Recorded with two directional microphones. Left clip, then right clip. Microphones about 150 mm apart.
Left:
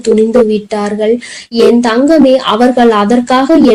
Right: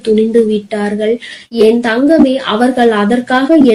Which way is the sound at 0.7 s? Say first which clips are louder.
Left 3 dB; 30° left (ahead or behind).